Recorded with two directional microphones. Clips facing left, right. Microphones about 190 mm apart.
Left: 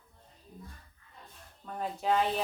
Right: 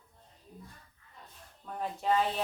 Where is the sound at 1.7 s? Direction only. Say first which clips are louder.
Even; centre (ahead or behind).